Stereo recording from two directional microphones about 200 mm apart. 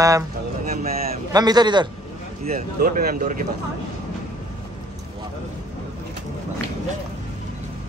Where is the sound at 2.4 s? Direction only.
45° right (ahead or behind).